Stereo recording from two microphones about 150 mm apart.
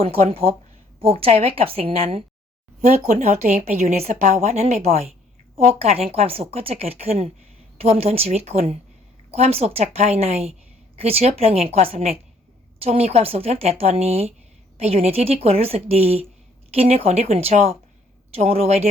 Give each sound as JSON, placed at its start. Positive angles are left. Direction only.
{"t": 0.0, "sound": "a woman's voice", "side_deg": -40}